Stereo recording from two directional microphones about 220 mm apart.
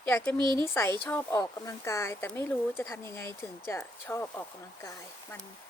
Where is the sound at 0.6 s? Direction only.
10° left (ahead or behind).